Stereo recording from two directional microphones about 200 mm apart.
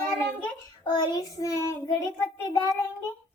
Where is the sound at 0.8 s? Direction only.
20° left (ahead or behind).